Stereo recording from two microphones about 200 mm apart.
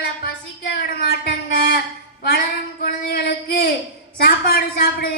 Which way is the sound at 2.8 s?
55° left (ahead or behind).